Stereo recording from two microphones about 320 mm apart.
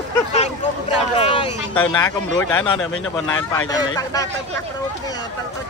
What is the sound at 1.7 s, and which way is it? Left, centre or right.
A man's voice, centre.